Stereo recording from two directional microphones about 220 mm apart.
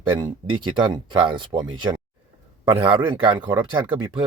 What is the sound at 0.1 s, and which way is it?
Speech, 20° right (ahead or behind).